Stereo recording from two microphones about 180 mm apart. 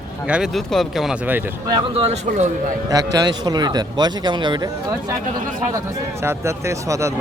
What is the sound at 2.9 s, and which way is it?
Speech, 20° right (ahead or behind).